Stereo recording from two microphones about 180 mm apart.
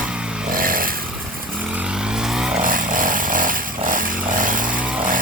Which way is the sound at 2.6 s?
50° right (ahead or behind).